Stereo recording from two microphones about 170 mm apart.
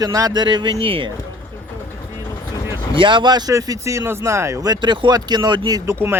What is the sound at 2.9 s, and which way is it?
Speech, 30° right (ahead or behind).